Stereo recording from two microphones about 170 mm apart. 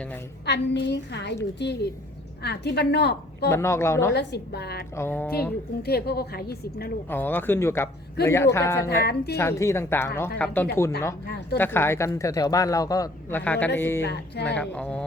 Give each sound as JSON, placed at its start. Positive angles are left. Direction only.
{"t": 0.4, "sound": "a woman's voice", "side_deg": 85}
{"t": 2.4, "sound": "a woman's voice", "side_deg": 75}
{"t": 3.5, "sound": "speech", "side_deg": 15}
{"t": 4.1, "sound": "a woman's voice", "side_deg": 80}
{"t": 4.9, "sound": "speech", "side_deg": 10}
{"t": 5.8, "sound": "a woman's voice", "side_deg": 70}
{"t": 7.1, "sound": "speech", "side_deg": 10}
{"t": 8.9, "sound": "a woman's voice", "side_deg": 75}
{"t": 9.3, "sound": "speech", "side_deg": 15}
{"t": 13.4, "sound": "speech", "side_deg": 10}
{"t": 14.0, "sound": "speech", "side_deg": 80}
{"t": 14.4, "sound": "speech", "side_deg": 10}